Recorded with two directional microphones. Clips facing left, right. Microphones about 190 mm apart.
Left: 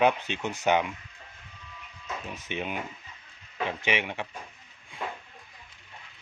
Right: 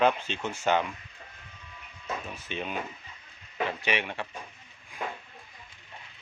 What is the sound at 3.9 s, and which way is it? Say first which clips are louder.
Speech: left 1 dB; 15° left (ahead or behind).